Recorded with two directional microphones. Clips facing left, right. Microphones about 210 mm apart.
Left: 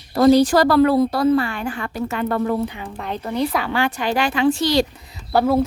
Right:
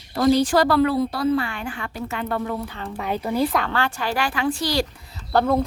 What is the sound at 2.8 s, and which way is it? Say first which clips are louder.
Speech: right 1 dB; 5° right (ahead or behind).